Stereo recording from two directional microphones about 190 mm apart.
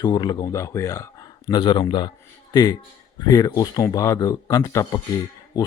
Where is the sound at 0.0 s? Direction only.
20° left (ahead or behind).